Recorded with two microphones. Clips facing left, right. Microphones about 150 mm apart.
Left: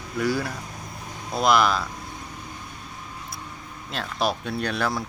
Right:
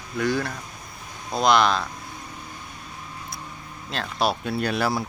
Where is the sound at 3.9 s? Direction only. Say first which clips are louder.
Right 1 dB; centre (ahead or behind).